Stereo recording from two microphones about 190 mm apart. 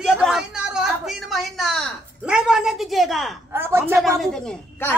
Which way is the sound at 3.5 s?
10° right (ahead or behind).